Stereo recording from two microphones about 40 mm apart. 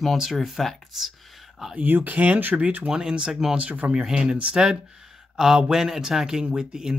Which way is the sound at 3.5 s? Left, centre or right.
Right.